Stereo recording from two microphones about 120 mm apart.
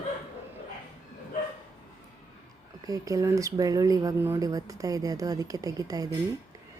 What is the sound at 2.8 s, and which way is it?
Speech, 30° right (ahead or behind).